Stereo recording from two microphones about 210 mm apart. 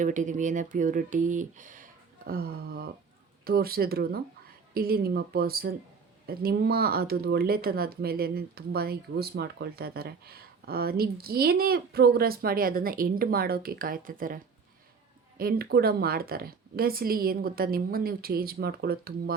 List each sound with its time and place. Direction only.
0.0 s speech: 35° right (ahead or behind)